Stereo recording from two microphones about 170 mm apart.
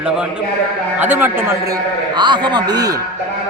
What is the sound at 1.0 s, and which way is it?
Speech, 10° right (ahead or behind).